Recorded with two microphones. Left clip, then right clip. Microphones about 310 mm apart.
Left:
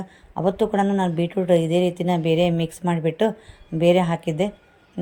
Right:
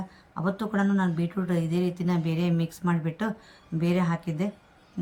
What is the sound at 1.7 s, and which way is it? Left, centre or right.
Speech, centre.